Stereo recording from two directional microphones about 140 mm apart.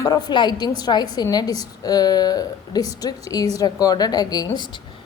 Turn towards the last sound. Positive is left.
turn(degrees=30)  # may be behind; listen again after turning